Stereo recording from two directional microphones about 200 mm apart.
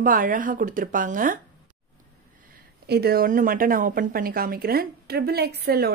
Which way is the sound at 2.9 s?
50° right (ahead or behind).